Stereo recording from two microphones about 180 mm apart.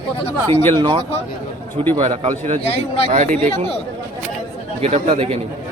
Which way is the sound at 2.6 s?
35° left (ahead or behind).